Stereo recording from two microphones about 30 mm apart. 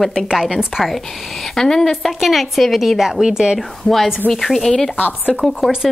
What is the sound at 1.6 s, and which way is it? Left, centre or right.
Speech, centre.